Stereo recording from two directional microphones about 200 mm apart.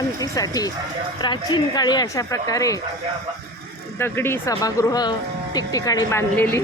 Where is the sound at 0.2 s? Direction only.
20° left (ahead or behind).